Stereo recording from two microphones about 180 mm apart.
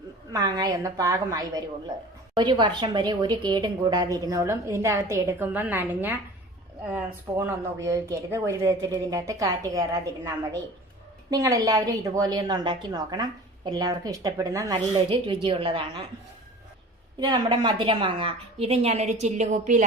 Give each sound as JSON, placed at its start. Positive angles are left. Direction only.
{"t": 0.3, "sound": "a woman's voice", "side_deg": -20}
{"t": 15.1, "sound": "a woman's voice", "side_deg": -30}
{"t": 17.2, "sound": "a woman's voice", "side_deg": -25}